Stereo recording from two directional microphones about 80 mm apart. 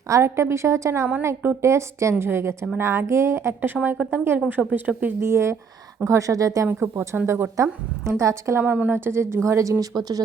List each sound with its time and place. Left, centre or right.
0.1 s a woman's voice: right
5.2 s a woman's voice: right
6.7 s a woman's voice: right
8.6 s a woman's voice: right